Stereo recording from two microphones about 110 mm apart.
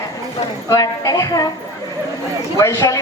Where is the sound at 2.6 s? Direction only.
30° left (ahead or behind).